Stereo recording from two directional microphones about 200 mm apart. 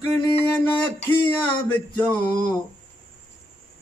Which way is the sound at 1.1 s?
20° left (ahead or behind).